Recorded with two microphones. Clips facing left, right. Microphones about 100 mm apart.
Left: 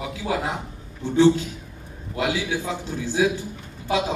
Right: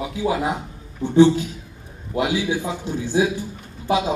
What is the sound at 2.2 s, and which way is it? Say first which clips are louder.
A man's voice: right 3 dB; 15° right (ahead or behind).